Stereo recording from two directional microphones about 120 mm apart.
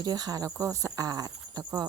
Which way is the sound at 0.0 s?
35° right (ahead or behind).